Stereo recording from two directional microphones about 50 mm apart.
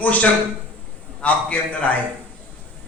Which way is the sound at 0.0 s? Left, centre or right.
Left.